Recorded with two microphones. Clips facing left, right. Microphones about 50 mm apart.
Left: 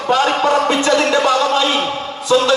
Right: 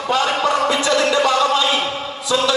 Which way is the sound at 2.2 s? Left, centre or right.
Left.